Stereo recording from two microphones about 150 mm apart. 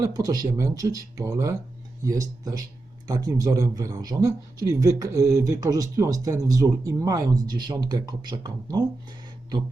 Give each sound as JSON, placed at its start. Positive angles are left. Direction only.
{"t": 0.0, "sound": "a man's voice", "side_deg": -25}